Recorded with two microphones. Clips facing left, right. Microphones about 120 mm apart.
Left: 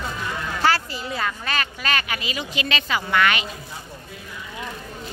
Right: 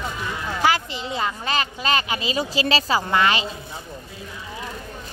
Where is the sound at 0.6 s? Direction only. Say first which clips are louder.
Even; 20° right (ahead or behind).